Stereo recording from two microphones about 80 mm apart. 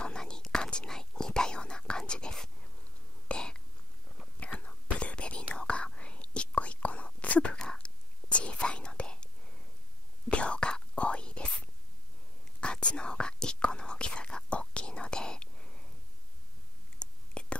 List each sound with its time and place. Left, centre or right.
0.0 s whispering: centre
10.3 s whispering: centre
17.0 s whispering: centre